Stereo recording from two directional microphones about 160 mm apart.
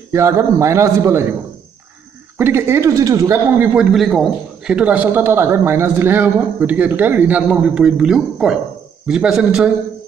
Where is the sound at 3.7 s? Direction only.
5° right (ahead or behind).